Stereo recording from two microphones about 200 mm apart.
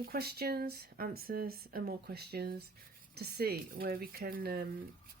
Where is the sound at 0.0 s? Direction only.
50° right (ahead or behind).